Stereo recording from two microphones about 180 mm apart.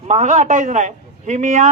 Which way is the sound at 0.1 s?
40° right (ahead or behind).